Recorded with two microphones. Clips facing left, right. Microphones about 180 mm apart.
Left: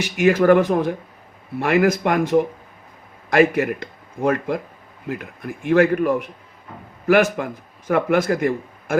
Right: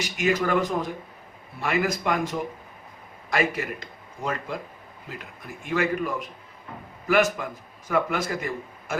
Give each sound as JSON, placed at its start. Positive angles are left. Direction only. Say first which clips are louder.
{"t": 0.2, "sound": "a man's voice", "louder": "left 9 dB", "side_deg": 55}